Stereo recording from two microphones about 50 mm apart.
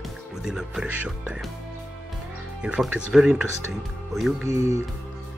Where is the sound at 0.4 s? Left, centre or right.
Centre.